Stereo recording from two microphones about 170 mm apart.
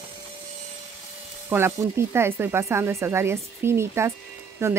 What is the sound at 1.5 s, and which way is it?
Speech, 15° right (ahead or behind).